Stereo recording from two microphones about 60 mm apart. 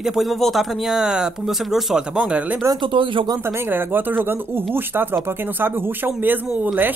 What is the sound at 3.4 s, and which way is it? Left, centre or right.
Speech, right.